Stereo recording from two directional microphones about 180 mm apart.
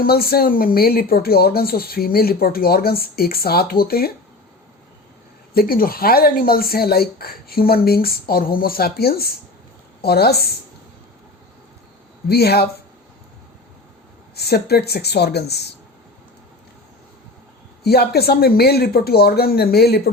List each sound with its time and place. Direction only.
0.0 s speech: 60° left (ahead or behind)
5.5 s speech: 55° left (ahead or behind)
12.3 s speech: 60° left (ahead or behind)
14.3 s speech: 60° left (ahead or behind)
17.8 s speech: 60° left (ahead or behind)